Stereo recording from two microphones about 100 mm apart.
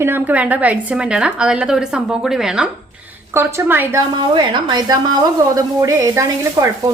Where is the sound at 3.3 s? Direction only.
20° right (ahead or behind).